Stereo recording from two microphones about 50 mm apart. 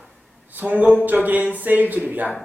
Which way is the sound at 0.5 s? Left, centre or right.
Right.